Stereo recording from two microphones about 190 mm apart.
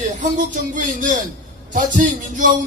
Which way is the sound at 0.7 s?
40° right (ahead or behind).